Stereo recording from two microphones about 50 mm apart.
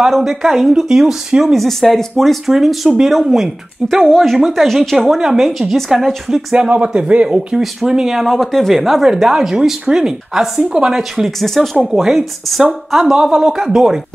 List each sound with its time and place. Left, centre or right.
0.1 s speech: centre
3.8 s speech: centre
4.6 s speech: centre
6.5 s speech: right
7.6 s speech: centre
11.0 s speech: centre
11.9 s speech: centre